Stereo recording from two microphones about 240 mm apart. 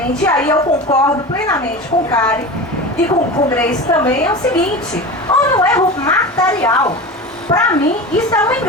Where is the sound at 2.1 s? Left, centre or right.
Centre.